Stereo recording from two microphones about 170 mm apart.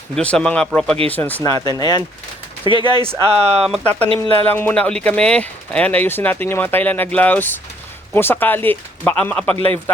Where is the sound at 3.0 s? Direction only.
35° right (ahead or behind).